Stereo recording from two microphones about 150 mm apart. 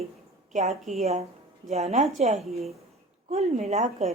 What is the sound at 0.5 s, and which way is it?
Speech, 50° right (ahead or behind).